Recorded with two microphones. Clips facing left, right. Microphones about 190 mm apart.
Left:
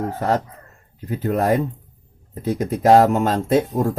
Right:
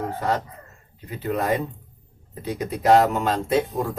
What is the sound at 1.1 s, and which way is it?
Speech, 45° left (ahead or behind).